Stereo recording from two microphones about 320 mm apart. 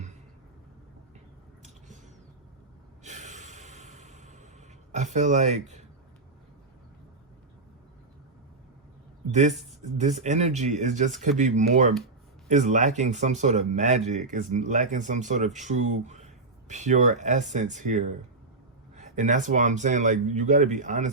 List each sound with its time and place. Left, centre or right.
3.0 s snort: right
4.9 s speech: right
10.0 s speech: right